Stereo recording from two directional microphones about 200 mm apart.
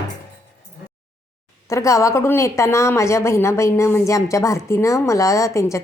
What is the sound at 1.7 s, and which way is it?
A woman's voice, 15° left (ahead or behind).